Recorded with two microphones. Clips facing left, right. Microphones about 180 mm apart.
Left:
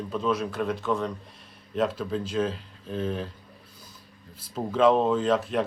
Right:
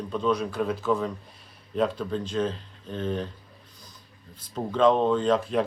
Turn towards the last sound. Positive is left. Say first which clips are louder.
# right 1 dB
turn(degrees=0)  # may be behind; listen again after turning